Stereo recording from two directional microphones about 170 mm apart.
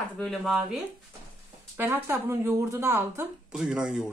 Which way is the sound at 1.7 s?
15° right (ahead or behind).